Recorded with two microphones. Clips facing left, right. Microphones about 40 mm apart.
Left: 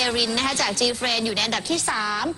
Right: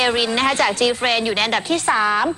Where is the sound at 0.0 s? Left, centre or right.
Right.